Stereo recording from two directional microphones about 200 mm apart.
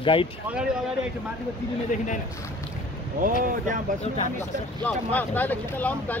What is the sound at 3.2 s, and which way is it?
Speech, 40° right (ahead or behind).